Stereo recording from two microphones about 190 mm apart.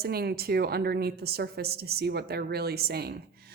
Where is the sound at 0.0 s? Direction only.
55° right (ahead or behind).